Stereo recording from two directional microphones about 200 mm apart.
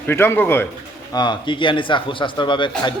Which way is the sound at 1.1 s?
20° left (ahead or behind).